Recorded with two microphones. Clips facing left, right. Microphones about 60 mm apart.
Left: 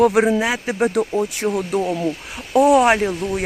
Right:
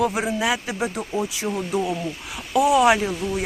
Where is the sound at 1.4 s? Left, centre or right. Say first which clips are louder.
Left 6 dB; centre.